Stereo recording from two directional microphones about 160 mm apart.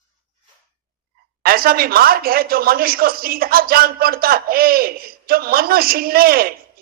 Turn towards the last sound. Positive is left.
turn(degrees=-70)  # may be behind; listen again after turning